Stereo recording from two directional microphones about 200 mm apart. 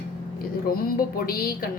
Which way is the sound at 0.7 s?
45° left (ahead or behind).